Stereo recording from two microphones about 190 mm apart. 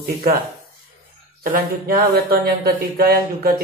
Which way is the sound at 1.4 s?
50° right (ahead or behind).